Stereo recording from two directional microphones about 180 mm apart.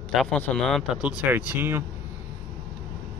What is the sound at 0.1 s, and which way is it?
Speech, 5° left (ahead or behind).